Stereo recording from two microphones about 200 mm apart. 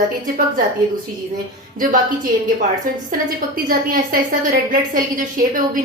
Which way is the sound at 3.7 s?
45° right (ahead or behind).